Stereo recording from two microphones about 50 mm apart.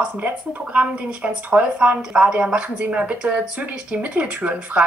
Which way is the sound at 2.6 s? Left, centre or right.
Right.